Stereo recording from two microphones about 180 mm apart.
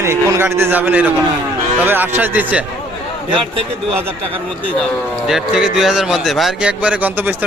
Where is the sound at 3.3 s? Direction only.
30° right (ahead or behind).